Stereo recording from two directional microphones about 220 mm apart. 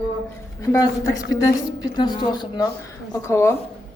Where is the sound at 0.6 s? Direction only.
15° left (ahead or behind).